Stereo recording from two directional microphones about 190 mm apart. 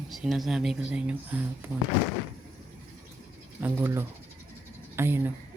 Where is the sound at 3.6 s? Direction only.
10° right (ahead or behind).